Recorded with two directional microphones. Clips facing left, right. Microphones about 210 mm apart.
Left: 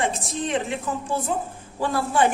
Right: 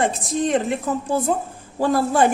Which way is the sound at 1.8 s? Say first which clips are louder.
Right 4 dB; 40° right (ahead or behind).